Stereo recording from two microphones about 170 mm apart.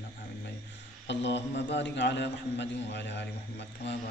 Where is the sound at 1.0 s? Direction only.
90° left.